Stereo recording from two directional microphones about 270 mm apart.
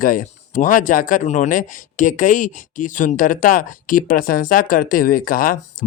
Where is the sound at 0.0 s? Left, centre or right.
Left.